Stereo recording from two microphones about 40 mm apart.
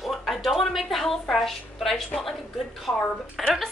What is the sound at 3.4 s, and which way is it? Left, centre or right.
Speech, centre.